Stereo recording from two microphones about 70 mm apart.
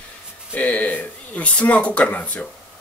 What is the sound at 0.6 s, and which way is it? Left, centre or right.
Speech, left.